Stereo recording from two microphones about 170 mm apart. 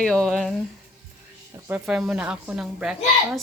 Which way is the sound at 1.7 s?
5° right (ahead or behind).